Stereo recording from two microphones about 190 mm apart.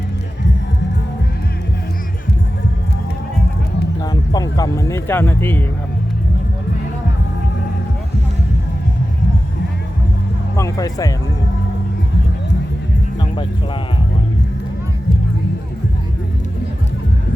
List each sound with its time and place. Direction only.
4.0 s speech: 20° left (ahead or behind)
10.6 s speech: 20° left (ahead or behind)